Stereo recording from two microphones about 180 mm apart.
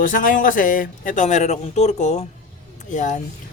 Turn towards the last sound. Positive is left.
turn(degrees=45)  # may be behind; listen again after turning